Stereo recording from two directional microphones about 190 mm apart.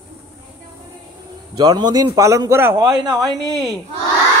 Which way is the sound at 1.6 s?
20° right (ahead or behind).